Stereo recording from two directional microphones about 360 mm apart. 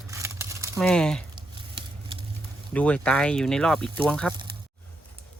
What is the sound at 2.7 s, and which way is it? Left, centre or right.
Speech, centre.